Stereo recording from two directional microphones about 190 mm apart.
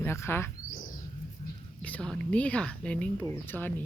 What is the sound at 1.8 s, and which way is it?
Speech, 5° left (ahead or behind).